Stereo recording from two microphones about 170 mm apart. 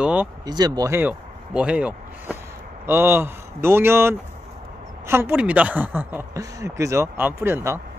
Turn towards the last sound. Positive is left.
turn(degrees=-15)  # may be behind; listen again after turning